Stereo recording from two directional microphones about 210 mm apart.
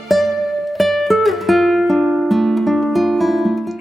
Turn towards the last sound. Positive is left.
turn(degrees=0)  # may be behind; listen again after turning